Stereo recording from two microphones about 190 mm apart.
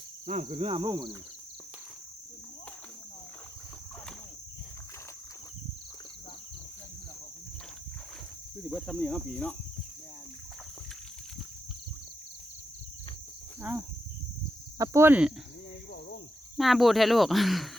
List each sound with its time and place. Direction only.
0.3 s speech: 40° right (ahead or behind); by 1.1 s 25° right (ahead or behind)
8.7 s speech: centre (ahead or behind)
13.6 s speech: 10° right (ahead or behind)
16.6 s speech: centre (ahead or behind)